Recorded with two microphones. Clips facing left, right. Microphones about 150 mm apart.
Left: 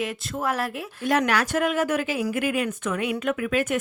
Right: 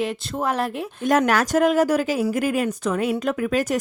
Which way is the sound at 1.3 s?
40° right (ahead or behind).